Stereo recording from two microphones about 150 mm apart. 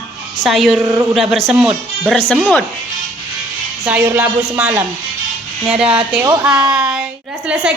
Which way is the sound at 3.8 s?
20° right (ahead or behind).